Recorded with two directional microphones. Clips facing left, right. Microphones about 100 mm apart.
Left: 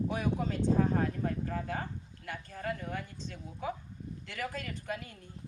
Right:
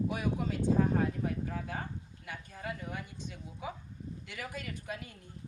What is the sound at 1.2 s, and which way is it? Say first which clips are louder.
Speech: left 1 dB; 10° right (ahead or behind).